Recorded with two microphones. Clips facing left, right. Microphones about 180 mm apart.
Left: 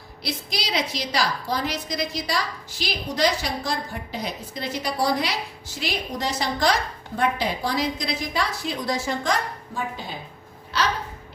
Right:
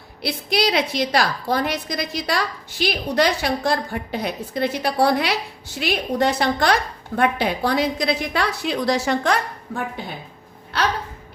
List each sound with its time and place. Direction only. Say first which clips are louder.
0.2 s a woman's voice: right 9 dB; 60° right (ahead or behind)